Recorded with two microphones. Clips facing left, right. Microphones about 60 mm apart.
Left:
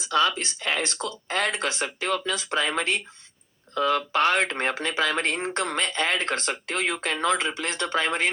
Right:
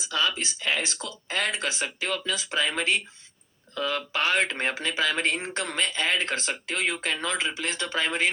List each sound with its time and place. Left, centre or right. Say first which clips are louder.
0.0 s speech: left 4 dB; left